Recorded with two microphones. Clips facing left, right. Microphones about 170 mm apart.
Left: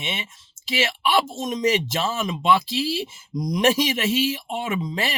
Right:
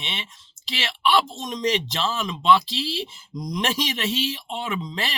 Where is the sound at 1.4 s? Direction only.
50° left (ahead or behind).